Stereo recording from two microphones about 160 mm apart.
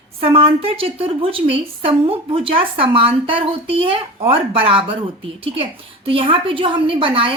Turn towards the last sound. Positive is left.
turn(degrees=-35)  # may be behind; listen again after turning